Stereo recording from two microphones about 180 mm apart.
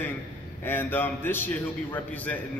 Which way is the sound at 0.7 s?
10° left (ahead or behind).